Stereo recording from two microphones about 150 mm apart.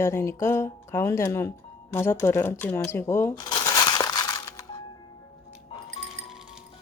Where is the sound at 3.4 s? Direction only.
25° left (ahead or behind).